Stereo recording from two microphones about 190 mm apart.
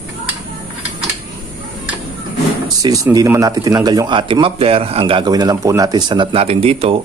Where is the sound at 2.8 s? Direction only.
20° right (ahead or behind).